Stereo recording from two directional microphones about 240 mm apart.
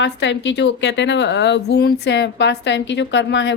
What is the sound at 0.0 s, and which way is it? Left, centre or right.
A woman's voice, left.